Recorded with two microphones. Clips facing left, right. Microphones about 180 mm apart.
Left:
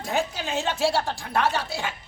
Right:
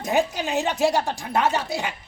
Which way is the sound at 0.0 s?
20° right (ahead or behind).